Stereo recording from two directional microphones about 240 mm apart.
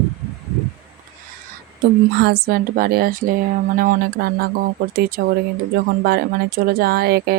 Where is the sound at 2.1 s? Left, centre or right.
Right.